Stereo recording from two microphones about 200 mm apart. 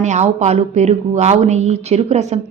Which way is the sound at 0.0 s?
35° right (ahead or behind).